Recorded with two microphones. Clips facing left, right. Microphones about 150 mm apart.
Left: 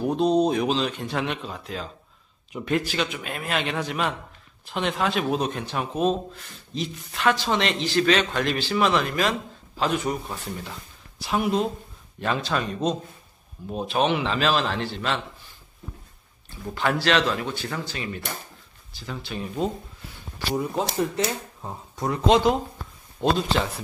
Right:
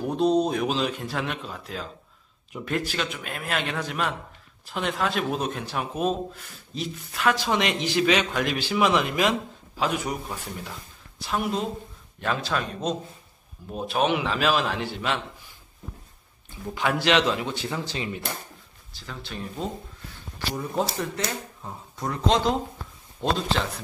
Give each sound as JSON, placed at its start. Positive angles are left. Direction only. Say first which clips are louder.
{"t": 0.0, "sound": "a man's voice", "louder": "left 1 dB", "side_deg": 0}
{"t": 9.8, "sound": "a man's voice", "louder": "left 2 dB", "side_deg": -10}
{"t": 16.7, "sound": "speech", "louder": "even", "side_deg": -15}
{"t": 19.0, "sound": "speech", "louder": "left 3 dB", "side_deg": 5}
{"t": 21.6, "sound": "a man's voice", "louder": "left 4 dB", "side_deg": 15}